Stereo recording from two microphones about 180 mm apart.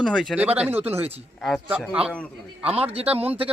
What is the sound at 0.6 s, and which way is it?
Speech, 10° right (ahead or behind).